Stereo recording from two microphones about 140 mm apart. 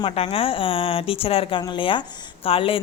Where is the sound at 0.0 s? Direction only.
40° left (ahead or behind).